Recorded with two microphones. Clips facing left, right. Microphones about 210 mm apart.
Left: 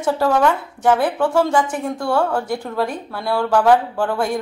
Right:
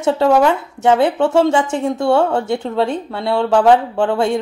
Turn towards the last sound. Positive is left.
turn(degrees=-25)  # may be behind; listen again after turning